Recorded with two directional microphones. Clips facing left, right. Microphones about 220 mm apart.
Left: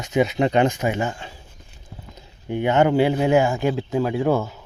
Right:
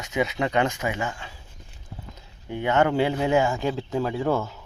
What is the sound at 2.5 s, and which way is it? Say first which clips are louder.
Speech: left 4 dB; 15° left (ahead or behind).